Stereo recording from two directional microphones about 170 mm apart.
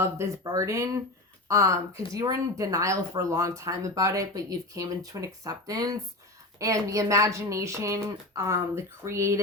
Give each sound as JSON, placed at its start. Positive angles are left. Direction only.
{"t": 0.0, "sound": "speech", "side_deg": -15}